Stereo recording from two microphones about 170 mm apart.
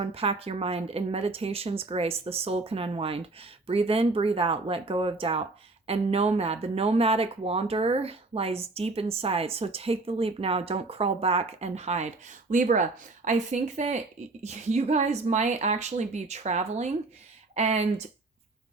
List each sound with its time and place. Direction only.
0.0 s speech: 35° right (ahead or behind)